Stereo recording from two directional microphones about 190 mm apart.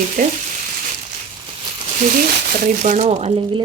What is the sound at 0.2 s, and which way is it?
Frying, 50° right (ahead or behind).